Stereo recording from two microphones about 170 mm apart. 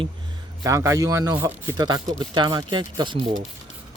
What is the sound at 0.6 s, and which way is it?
Speech, 20° right (ahead or behind).